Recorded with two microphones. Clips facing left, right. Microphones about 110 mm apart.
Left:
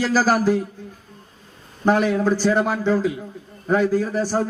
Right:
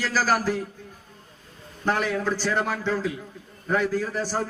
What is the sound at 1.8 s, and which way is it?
A man's voice, 15° left (ahead or behind).